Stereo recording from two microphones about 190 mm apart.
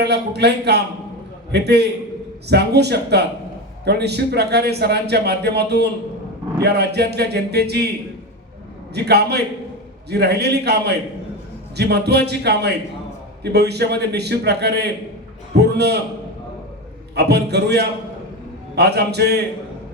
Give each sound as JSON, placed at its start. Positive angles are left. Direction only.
{"t": 0.0, "sound": "a man's voice", "side_deg": -60}
{"t": 8.9, "sound": "a man's voice", "side_deg": -60}
{"t": 17.2, "sound": "a man's voice", "side_deg": -60}